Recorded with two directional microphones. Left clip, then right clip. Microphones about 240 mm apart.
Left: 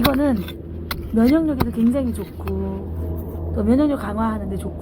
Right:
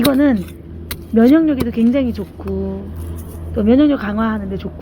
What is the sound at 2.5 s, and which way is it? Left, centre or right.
Speech, left.